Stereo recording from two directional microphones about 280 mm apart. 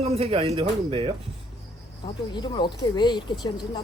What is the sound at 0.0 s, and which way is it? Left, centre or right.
Speech, right.